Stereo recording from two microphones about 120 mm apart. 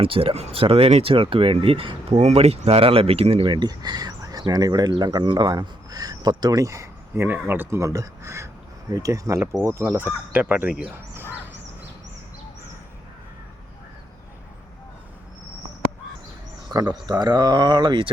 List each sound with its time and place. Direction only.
0.0 s speech: 50° right (ahead or behind); by 10.9 s 10° right (ahead or behind)
11.1 s fowl: 20° right (ahead or behind)
16.7 s speech: 35° right (ahead or behind)